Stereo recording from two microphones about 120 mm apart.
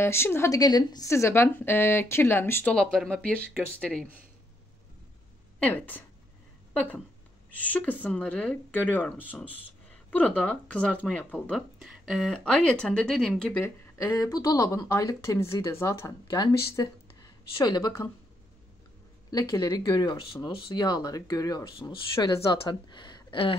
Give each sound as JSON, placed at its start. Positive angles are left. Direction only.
{"t": 0.0, "sound": "a woman's voice", "side_deg": 20}
{"t": 2.7, "sound": "speech", "side_deg": 5}
{"t": 5.6, "sound": "speech", "side_deg": 15}
{"t": 7.5, "sound": "speech", "side_deg": 10}
{"t": 13.9, "sound": "a woman's voice", "side_deg": 30}
{"t": 19.3, "sound": "speech", "side_deg": 35}